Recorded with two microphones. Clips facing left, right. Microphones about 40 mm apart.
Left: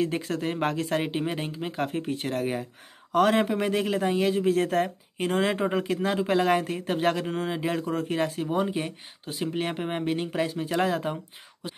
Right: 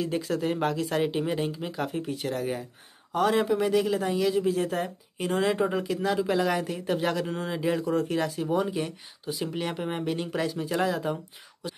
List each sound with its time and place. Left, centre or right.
0.0 s speech: left
4.5 s speech: left
5.1 s speech: left
9.2 s speech: left
9.6 s speech: left